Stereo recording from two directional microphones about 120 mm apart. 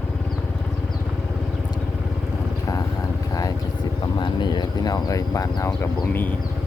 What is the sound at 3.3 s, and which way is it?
Vehicle, 30° left (ahead or behind).